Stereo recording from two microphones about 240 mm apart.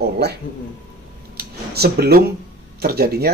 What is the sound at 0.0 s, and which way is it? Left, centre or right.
Speech, right.